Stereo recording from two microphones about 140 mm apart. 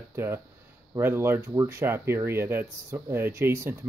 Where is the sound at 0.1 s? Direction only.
15° right (ahead or behind).